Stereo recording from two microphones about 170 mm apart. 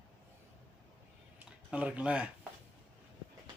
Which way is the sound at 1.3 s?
10° right (ahead or behind).